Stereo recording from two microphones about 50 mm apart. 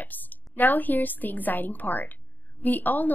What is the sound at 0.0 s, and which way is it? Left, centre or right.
A woman's voice, left.